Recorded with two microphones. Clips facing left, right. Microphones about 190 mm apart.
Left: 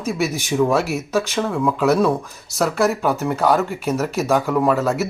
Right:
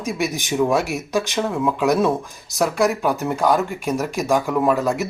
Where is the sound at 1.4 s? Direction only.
5° right (ahead or behind).